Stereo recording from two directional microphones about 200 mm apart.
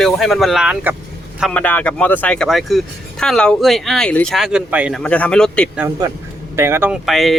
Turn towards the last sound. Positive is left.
turn(degrees=0)  # may be behind; listen again after turning